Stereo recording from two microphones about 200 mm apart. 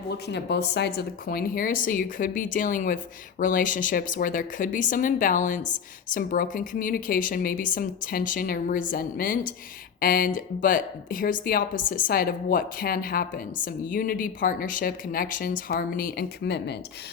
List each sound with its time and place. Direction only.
0.3 s speech: 60° left (ahead or behind)